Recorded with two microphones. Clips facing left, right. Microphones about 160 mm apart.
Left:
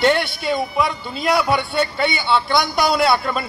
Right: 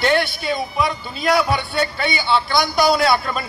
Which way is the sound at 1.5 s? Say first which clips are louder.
Left 2 dB; 25° left (ahead or behind).